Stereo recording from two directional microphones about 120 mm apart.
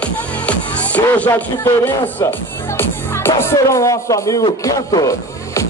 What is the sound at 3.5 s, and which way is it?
Speech, 25° left (ahead or behind).